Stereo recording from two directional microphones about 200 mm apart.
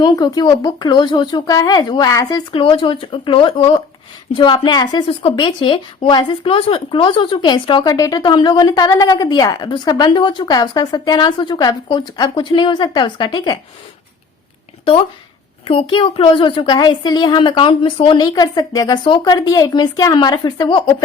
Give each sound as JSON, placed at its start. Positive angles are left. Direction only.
{"t": 0.0, "sound": "speech", "side_deg": 20}
{"t": 15.6, "sound": "speech", "side_deg": 25}